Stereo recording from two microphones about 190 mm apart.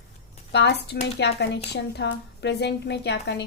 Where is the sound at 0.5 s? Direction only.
65° left (ahead or behind).